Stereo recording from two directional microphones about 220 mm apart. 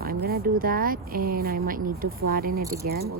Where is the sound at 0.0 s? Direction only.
40° right (ahead or behind).